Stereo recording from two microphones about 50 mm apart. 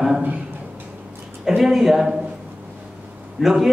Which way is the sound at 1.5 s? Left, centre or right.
Centre.